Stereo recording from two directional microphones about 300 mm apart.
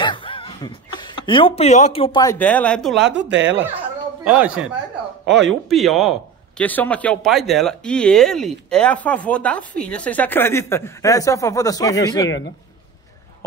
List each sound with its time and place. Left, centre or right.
0.0 s speech: centre
3.1 s speech: right
4.2 s speech: centre